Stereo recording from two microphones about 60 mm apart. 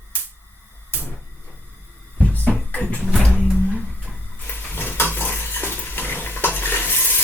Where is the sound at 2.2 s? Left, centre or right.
Left.